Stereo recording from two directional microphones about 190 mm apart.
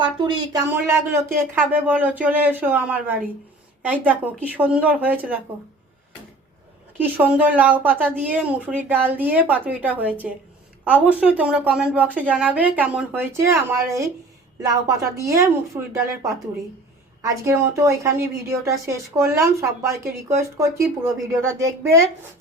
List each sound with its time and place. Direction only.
0.0 s speech: 25° right (ahead or behind)
0.7 s a woman's voice: 10° right (ahead or behind)
7.0 s a woman's voice: 10° right (ahead or behind)
17.4 s a woman's voice: 15° right (ahead or behind)